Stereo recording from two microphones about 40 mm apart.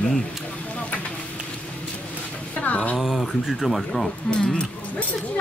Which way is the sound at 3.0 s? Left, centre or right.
Centre.